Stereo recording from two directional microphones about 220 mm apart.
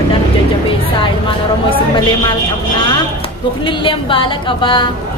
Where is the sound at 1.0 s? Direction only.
25° left (ahead or behind).